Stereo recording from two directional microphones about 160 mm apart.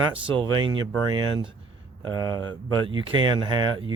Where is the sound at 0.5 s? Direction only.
30° right (ahead or behind).